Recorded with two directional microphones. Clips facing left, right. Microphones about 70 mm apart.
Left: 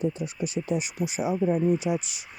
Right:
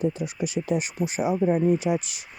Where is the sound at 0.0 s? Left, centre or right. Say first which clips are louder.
Right 2 dB; right.